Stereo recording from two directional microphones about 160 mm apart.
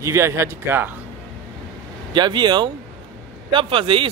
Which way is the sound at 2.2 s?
30° right (ahead or behind).